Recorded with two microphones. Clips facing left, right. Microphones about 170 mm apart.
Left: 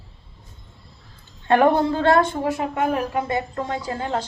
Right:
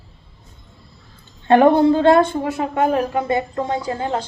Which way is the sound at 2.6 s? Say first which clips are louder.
Right 4 dB; 30° right (ahead or behind).